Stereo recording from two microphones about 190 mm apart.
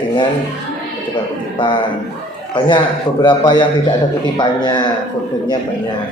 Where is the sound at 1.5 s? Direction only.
25° left (ahead or behind).